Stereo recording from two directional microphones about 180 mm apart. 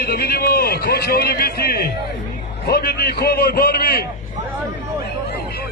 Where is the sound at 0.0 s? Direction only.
60° left (ahead or behind).